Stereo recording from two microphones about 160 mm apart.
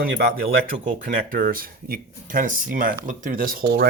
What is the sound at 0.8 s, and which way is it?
Speech, 60° right (ahead or behind).